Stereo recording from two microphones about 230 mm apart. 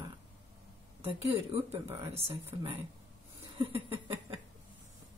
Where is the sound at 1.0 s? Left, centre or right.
Right.